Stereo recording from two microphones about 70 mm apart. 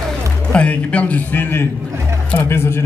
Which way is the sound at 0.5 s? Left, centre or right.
Centre.